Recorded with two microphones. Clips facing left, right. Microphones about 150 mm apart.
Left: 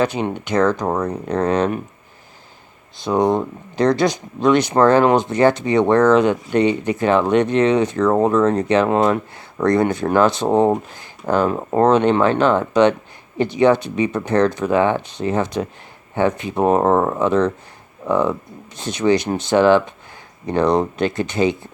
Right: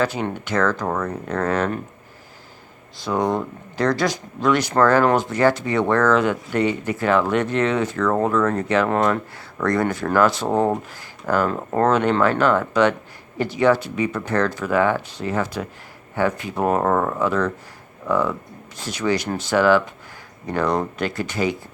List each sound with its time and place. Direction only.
0.0 s speech: 20° left (ahead or behind)
3.0 s speech: 20° left (ahead or behind)